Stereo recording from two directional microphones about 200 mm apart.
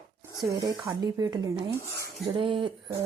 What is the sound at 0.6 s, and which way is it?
A woman's voice, 20° right (ahead or behind).